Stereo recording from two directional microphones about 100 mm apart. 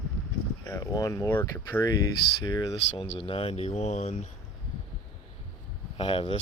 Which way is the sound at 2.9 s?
65° left (ahead or behind).